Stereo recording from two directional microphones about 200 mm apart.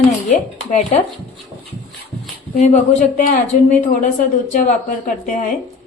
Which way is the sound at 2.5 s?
35° left (ahead or behind).